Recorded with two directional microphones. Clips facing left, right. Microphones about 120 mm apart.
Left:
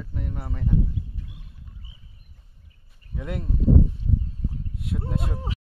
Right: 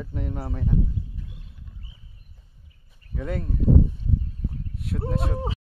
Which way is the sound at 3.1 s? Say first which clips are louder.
Right 2 dB; 10° left (ahead or behind).